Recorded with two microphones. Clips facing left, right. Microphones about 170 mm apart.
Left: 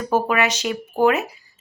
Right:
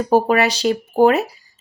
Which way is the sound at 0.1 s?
35° right (ahead or behind).